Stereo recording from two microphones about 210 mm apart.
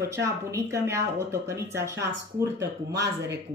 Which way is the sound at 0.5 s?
15° right (ahead or behind).